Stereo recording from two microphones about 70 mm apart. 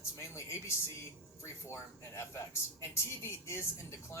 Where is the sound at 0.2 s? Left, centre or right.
Left.